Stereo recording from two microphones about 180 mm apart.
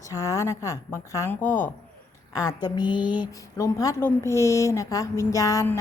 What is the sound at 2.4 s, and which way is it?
A woman's voice, 20° left (ahead or behind).